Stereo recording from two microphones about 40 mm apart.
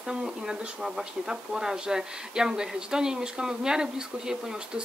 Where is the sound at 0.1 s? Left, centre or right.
Centre.